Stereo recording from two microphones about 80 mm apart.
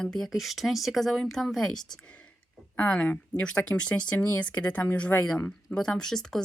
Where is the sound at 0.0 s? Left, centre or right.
Centre.